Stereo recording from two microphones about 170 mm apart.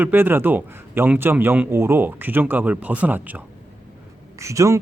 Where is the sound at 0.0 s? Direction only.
10° right (ahead or behind).